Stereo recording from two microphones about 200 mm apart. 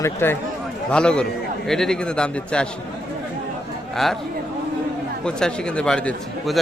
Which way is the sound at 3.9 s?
Centre (ahead or behind).